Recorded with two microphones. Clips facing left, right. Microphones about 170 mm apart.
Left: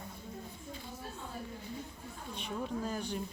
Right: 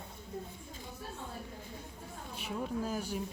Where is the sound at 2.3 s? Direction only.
5° right (ahead or behind).